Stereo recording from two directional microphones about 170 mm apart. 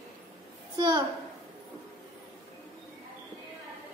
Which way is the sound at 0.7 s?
25° right (ahead or behind).